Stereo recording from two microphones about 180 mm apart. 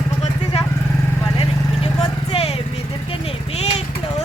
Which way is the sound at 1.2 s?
30° left (ahead or behind).